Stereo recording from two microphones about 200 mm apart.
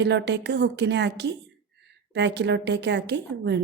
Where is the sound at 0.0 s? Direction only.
60° right (ahead or behind).